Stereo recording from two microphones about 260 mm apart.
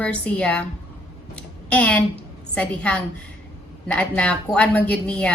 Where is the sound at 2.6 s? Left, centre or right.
Centre.